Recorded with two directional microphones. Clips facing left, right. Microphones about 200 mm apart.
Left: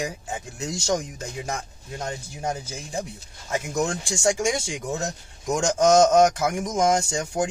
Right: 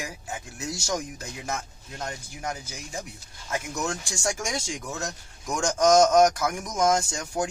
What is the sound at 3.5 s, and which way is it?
Speech, 25° left (ahead or behind).